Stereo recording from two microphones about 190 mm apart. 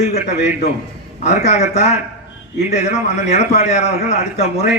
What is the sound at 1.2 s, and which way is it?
A man's voice, 35° left (ahead or behind).